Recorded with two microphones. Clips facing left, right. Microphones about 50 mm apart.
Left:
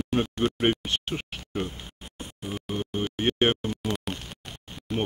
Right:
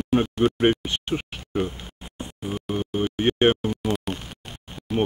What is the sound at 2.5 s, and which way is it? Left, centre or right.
Music, centre.